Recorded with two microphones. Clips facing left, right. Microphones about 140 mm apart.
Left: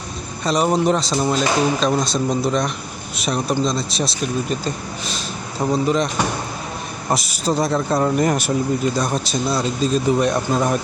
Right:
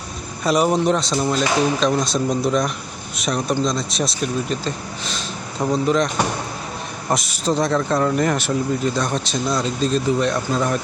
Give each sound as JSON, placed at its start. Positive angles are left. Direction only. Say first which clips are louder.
{"t": 0.4, "sound": "speech", "louder": "even", "side_deg": -5}
{"t": 5.5, "sound": "speech", "louder": "even", "side_deg": 5}
{"t": 7.1, "sound": "speech", "louder": "even", "side_deg": 10}